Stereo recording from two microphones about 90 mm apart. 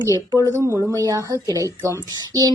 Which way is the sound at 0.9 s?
40° right (ahead or behind).